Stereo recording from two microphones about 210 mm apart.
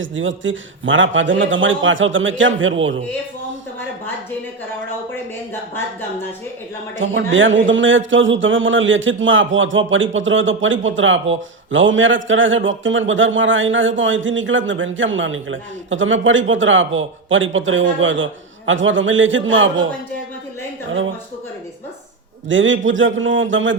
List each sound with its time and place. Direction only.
0.0 s a man's voice: 65° right (ahead or behind)
7.3 s a man's voice: 65° right (ahead or behind)
22.4 s a man's voice: 65° right (ahead or behind)